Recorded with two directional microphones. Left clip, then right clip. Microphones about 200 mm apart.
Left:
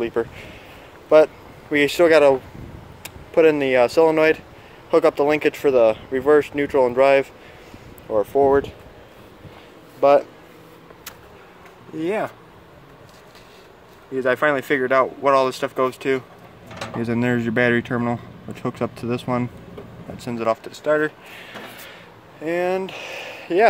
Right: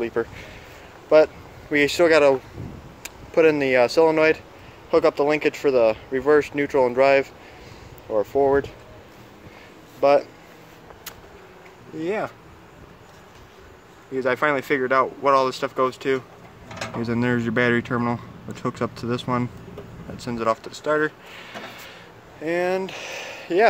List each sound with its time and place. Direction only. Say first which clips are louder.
0.0 s speech: left 2 dB; 10° left (ahead or behind)
9.9 s speech: left 3 dB; 15° left (ahead or behind)
12.0 s speech: left 3 dB; 15° left (ahead or behind)
14.1 s speech: left 2 dB; 5° left (ahead or behind)